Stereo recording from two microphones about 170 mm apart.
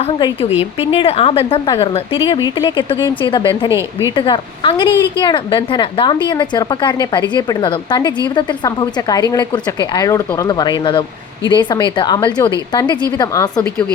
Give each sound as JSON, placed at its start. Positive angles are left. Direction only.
{"t": 0.6, "sound": "a woman's voice", "side_deg": 30}
{"t": 3.7, "sound": "a woman's voice", "side_deg": -15}
{"t": 4.1, "sound": "a woman's voice", "side_deg": 30}
{"t": 13.6, "sound": "speech", "side_deg": 5}